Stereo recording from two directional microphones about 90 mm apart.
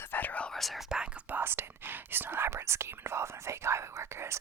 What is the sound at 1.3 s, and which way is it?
Whispering, 25° right (ahead or behind).